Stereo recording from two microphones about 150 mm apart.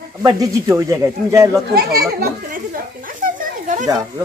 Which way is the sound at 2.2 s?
65° right (ahead or behind).